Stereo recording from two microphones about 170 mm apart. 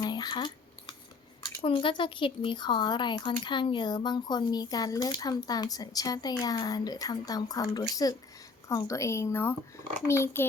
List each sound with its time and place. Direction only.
0.0 s cutlery: 25° left (ahead or behind)
1.6 s speech: 30° left (ahead or behind); by 10.4 s 15° left (ahead or behind)